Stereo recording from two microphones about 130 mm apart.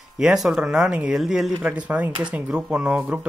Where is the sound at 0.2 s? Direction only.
5° right (ahead or behind).